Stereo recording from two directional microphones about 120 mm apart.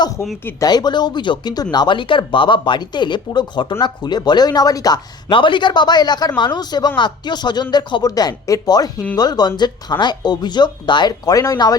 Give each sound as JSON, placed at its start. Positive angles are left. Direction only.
{"t": 0.6, "sound": "a man's voice", "side_deg": 35}
{"t": 5.3, "sound": "a man's voice", "side_deg": 45}